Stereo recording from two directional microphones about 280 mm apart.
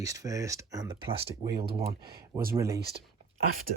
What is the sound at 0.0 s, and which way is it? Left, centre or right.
Speech, centre.